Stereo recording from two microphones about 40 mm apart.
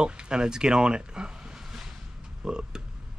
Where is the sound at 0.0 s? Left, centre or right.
Right.